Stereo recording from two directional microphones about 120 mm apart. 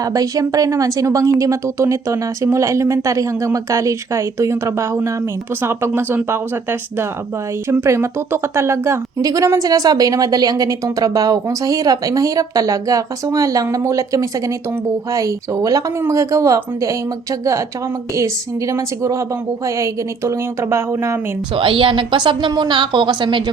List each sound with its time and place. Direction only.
0.0 s a woman's voice: 30° right (ahead or behind)
18.1 s a woman's voice: 25° right (ahead or behind)
21.5 s a woman's voice: 45° right (ahead or behind)